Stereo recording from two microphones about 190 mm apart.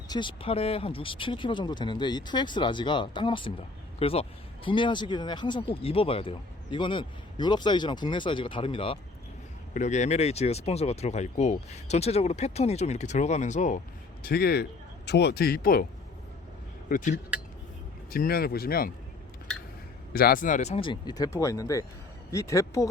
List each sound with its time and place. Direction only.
0.1 s speech: 25° left (ahead or behind)
9.7 s speech: 40° left (ahead or behind)
14.3 s speech: 55° left (ahead or behind)
16.9 s speech: 40° left (ahead or behind)
20.1 s speech: 50° left (ahead or behind); by 22.9 s 15° left (ahead or behind)